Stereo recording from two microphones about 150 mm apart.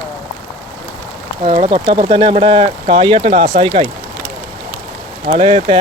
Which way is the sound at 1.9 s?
30° right (ahead or behind).